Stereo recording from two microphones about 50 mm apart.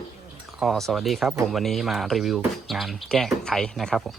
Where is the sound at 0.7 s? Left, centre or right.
Centre.